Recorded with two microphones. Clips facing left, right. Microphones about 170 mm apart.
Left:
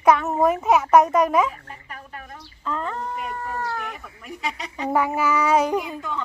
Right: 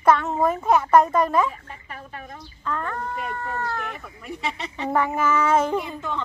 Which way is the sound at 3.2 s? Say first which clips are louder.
Even; 10° left (ahead or behind).